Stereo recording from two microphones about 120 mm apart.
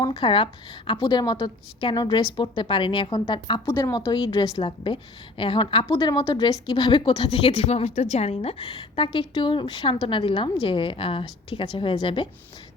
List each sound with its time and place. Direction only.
0.0 s a woman's voice: 45° left (ahead or behind)
3.7 s a woman's voice: 20° left (ahead or behind)
3.9 s a woman's voice: 40° left (ahead or behind)